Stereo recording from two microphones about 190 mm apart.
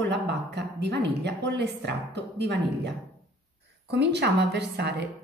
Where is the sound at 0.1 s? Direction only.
65° right (ahead or behind).